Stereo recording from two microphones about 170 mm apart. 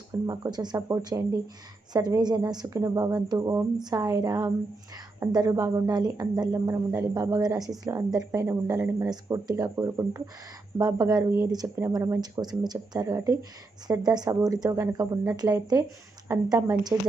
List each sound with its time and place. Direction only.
0.3 s a woman's voice: 20° right (ahead or behind)